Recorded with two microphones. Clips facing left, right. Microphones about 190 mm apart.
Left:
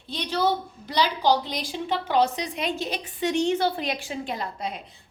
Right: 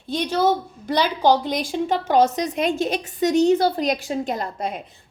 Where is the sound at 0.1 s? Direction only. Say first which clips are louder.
Right 5 dB; 45° right (ahead or behind).